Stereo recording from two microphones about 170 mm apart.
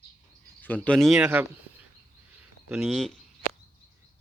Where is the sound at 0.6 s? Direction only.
10° left (ahead or behind); by 1.5 s 10° right (ahead or behind).